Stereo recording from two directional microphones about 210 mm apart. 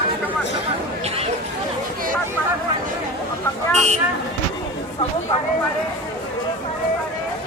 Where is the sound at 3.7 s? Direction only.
30° right (ahead or behind).